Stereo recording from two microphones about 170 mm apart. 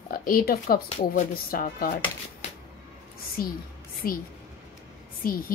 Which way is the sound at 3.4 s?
60° left (ahead or behind).